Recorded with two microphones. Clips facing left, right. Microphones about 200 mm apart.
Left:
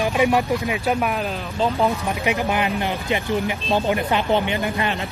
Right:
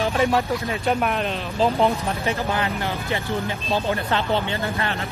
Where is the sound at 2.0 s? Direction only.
15° left (ahead or behind).